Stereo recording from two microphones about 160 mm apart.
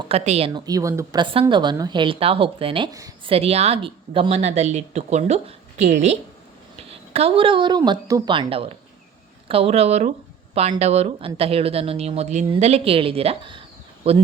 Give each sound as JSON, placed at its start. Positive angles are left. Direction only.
{"t": 0.1, "sound": "a woman's voice", "side_deg": -40}